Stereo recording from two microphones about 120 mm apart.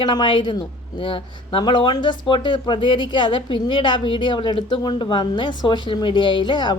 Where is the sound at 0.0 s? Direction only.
40° left (ahead or behind).